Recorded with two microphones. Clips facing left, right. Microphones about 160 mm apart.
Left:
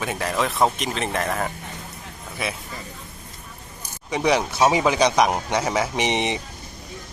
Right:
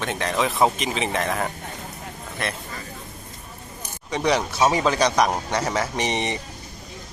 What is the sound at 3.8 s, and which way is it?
Speech, 10° left (ahead or behind).